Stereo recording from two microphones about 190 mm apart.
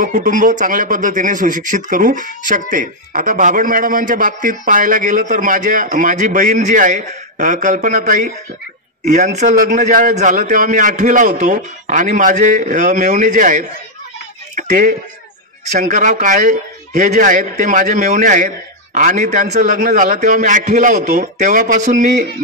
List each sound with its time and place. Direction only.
0.0 s a man's voice: 45° right (ahead or behind)
14.5 s a sound: 40° right (ahead or behind)
15.6 s speech: 40° right (ahead or behind)